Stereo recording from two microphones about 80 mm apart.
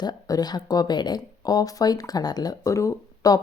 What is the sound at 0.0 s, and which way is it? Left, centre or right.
Speech, left.